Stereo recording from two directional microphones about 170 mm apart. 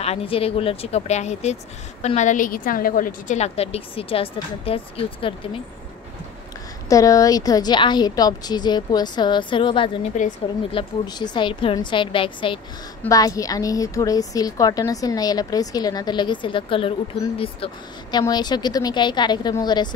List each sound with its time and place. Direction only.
0.0 s speech: 35° left (ahead or behind)
6.9 s a woman's voice: 20° left (ahead or behind)
10.1 s a woman's voice: 45° left (ahead or behind)
10.7 s a woman's voice: 30° left (ahead or behind)
13.1 s a woman's voice: 20° left (ahead or behind)